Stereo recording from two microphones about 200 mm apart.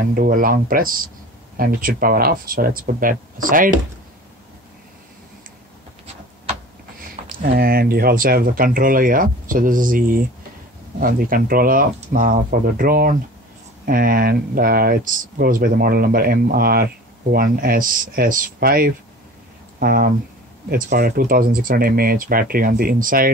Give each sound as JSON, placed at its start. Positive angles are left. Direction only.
{"t": 0.1, "sound": "speech", "side_deg": -45}
{"t": 7.2, "sound": "speech", "side_deg": -45}